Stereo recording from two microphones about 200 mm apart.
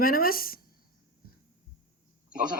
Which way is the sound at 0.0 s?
45° left (ahead or behind).